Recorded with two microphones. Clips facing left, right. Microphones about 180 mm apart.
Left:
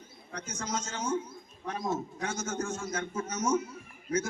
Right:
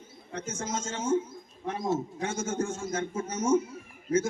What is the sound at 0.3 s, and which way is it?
A man's voice, 25° right (ahead or behind).